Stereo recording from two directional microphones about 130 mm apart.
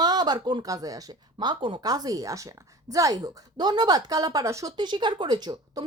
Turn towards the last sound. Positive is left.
turn(degrees=-30)  # may be behind; listen again after turning